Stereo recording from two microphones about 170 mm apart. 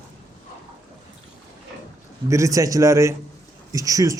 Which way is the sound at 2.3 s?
20° right (ahead or behind).